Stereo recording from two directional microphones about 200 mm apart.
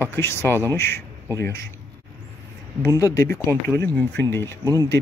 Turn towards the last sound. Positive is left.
turn(degrees=-15)  # may be behind; listen again after turning